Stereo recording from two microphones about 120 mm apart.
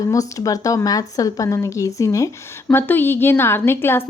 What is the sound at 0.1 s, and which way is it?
A woman's voice, 30° left (ahead or behind).